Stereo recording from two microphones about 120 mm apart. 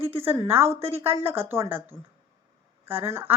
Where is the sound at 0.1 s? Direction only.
55° right (ahead or behind).